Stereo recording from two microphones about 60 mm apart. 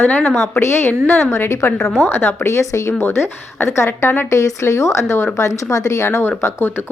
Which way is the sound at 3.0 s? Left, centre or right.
Left.